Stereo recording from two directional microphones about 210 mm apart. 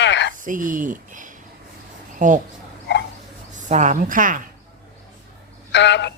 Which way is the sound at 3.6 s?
35° right (ahead or behind).